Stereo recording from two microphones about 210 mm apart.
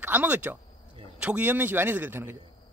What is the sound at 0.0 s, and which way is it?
A man's voice, 10° right (ahead or behind).